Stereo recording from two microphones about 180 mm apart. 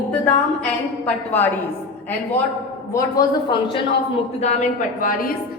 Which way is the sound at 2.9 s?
25° left (ahead or behind).